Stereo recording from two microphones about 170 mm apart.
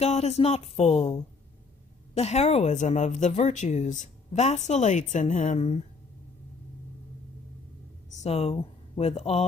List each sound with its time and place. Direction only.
0.0 s a woman's voice: 40° left (ahead or behind)
8.2 s speech: 35° left (ahead or behind)